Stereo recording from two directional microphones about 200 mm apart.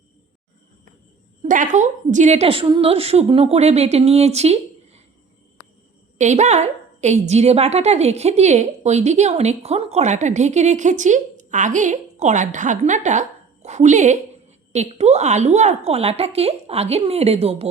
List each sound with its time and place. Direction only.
1.4 s a woman's voice: 40° right (ahead or behind)
6.1 s a woman's voice: 35° right (ahead or behind)